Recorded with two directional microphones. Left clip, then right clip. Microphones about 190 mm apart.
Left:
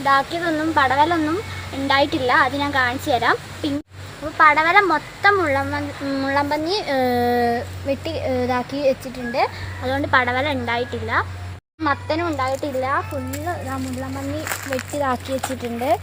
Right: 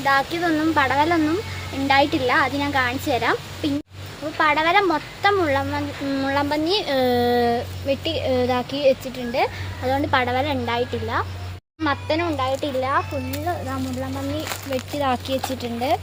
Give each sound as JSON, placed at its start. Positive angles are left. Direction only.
{"t": 0.0, "sound": "a woman's voice", "side_deg": -15}
{"t": 4.4, "sound": "speech", "side_deg": 0}
{"t": 9.8, "sound": "speech", "side_deg": -30}
{"t": 11.8, "sound": "speech", "side_deg": 5}
{"t": 14.4, "sound": "speech", "side_deg": 0}
{"t": 15.0, "sound": "speech", "side_deg": 25}